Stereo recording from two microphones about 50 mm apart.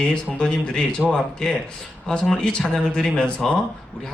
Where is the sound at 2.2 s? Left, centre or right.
Centre.